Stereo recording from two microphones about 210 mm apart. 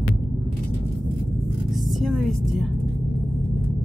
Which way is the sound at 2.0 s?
Centre (ahead or behind).